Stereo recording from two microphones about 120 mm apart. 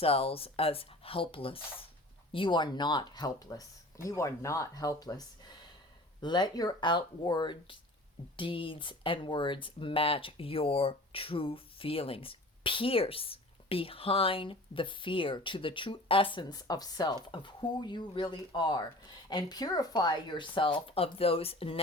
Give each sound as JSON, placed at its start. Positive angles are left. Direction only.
{"t": 0.0, "sound": "speech", "side_deg": 50}